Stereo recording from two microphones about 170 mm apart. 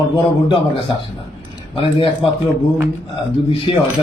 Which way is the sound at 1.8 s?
30° left (ahead or behind).